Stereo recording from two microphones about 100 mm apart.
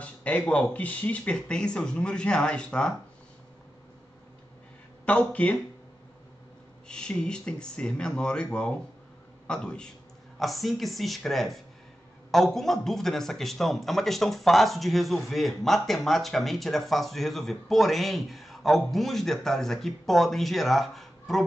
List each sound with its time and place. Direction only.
0.0 s speech: 15° left (ahead or behind)
5.0 s speech: 10° left (ahead or behind)
6.9 s a man's voice: 10° left (ahead or behind)